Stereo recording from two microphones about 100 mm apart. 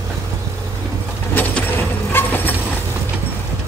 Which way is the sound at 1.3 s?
20° left (ahead or behind).